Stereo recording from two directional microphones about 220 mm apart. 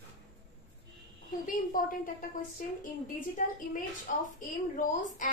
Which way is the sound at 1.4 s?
40° left (ahead or behind).